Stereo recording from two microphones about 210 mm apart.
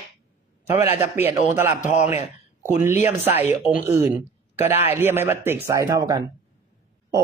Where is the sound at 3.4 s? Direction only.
10° right (ahead or behind).